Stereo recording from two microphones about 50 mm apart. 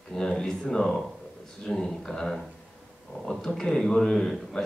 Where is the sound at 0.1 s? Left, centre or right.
Centre.